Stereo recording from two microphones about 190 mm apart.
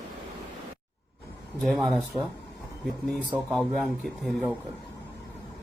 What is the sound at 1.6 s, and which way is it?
Speech, centre (ahead or behind).